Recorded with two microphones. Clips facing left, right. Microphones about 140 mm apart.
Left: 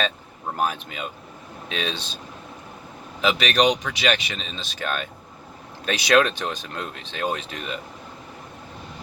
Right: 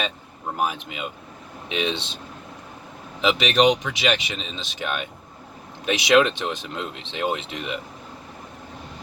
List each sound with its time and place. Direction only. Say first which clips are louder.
0.5 s speech: even; 15° right (ahead or behind)
3.2 s speech: right 1 dB; 20° right (ahead or behind)